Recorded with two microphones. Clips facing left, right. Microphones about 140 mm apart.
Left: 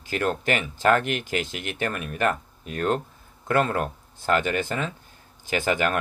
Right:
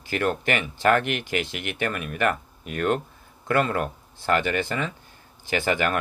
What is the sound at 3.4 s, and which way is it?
Speech, 50° left (ahead or behind).